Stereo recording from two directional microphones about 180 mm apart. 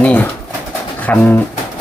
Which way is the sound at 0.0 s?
10° left (ahead or behind).